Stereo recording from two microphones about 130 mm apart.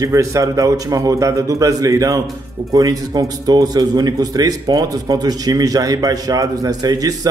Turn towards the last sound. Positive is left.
turn(degrees=-30)  # may be behind; listen again after turning